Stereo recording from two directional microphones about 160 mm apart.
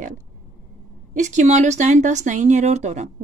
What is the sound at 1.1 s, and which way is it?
A woman's voice, 50° right (ahead or behind).